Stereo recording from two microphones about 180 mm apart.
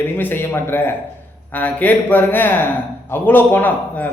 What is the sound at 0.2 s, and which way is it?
A man's voice, 10° left (ahead or behind).